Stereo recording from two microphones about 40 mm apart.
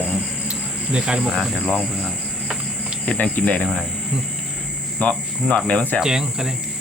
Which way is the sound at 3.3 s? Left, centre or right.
Left.